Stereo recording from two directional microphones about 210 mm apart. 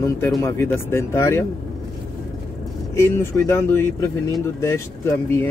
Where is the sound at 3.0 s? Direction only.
10° left (ahead or behind).